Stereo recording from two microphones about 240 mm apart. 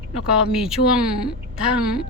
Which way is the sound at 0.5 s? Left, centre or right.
Centre.